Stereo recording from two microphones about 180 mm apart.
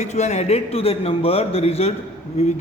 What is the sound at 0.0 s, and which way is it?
A man's voice, 40° left (ahead or behind).